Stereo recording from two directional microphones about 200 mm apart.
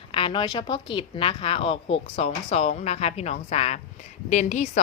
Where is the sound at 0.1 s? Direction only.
25° left (ahead or behind).